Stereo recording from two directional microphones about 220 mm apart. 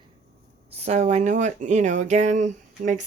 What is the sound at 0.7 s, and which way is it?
Speech, 30° right (ahead or behind).